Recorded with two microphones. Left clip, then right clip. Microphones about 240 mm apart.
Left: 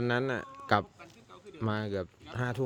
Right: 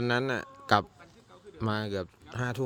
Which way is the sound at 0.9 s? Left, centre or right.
Left.